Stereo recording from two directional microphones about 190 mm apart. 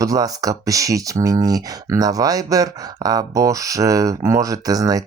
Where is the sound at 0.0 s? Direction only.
20° right (ahead or behind).